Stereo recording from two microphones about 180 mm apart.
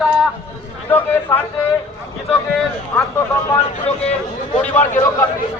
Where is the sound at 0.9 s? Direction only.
10° left (ahead or behind).